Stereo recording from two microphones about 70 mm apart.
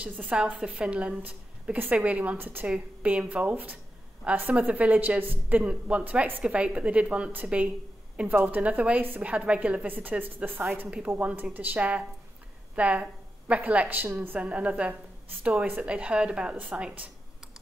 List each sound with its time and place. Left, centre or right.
0.0 s a woman's voice: centre
2.6 s a woman's voice: centre